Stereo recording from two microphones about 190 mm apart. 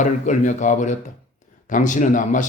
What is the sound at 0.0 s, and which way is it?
Speech, 40° left (ahead or behind).